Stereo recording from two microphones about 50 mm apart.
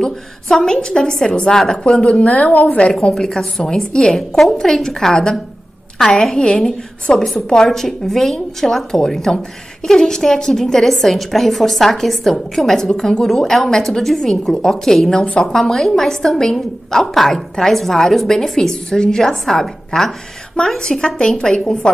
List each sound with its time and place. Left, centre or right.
0.0 s a woman's voice: centre; by 2.9 s left
2.9 s a woman's voice: centre
6.6 s a woman's voice: centre